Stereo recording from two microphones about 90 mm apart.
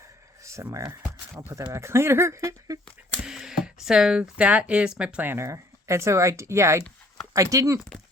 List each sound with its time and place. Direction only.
0.4 s speech: 35° right (ahead or behind)
3.2 s speech: 5° right (ahead or behind)
5.3 s speech: 30° right (ahead or behind)